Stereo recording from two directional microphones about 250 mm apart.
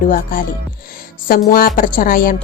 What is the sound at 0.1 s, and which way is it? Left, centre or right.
A woman's voice, left.